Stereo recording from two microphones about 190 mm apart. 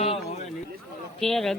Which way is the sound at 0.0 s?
35° left (ahead or behind).